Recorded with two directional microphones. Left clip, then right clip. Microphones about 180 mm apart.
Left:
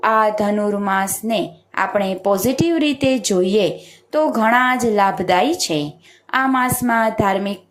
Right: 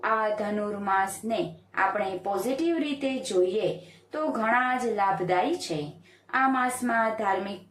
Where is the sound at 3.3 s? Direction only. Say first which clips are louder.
Left 8 dB; 35° left (ahead or behind).